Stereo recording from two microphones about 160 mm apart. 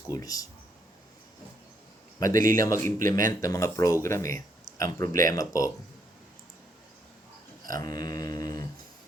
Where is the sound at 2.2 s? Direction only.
60° right (ahead or behind).